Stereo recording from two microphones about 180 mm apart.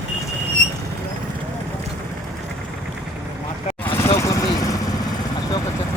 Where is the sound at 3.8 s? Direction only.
15° left (ahead or behind).